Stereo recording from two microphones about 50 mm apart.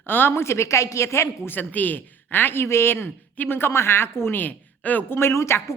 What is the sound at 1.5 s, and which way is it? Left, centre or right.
A woman's voice, left.